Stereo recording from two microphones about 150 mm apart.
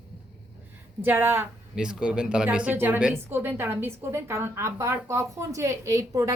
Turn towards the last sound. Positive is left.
turn(degrees=-20)  # may be behind; listen again after turning